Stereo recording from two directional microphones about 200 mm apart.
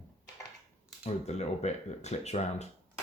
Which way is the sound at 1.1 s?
35° left (ahead or behind).